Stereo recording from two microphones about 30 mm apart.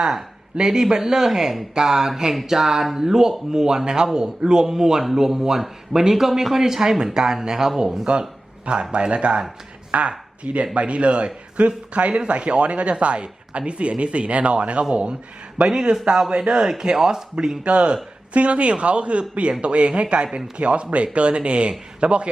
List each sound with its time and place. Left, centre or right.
0.5 s speech: right
4.7 s speech: centre
8.1 s speech: right
15.6 s speech: right
17.6 s speech: right